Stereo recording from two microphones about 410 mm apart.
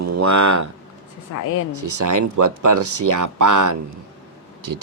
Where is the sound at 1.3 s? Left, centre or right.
Left.